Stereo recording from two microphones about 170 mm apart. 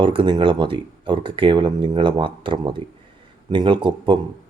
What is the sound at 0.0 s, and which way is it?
Speech, 30° right (ahead or behind).